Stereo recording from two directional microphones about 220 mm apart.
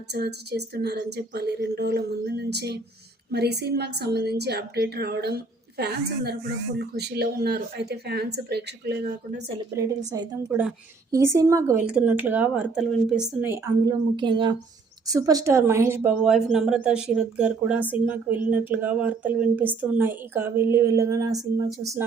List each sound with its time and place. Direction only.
0.1 s a woman's voice: 50° right (ahead or behind)
11.1 s a woman's voice: 15° right (ahead or behind)